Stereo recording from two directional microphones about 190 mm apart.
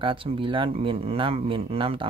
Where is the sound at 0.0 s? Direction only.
25° right (ahead or behind).